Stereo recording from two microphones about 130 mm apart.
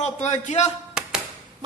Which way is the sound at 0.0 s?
60° left (ahead or behind).